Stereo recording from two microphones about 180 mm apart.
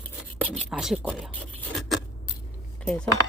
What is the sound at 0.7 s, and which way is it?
Speech, 5° right (ahead or behind).